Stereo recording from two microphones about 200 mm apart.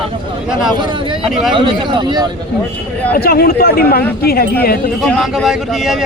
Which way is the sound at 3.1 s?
50° left (ahead or behind).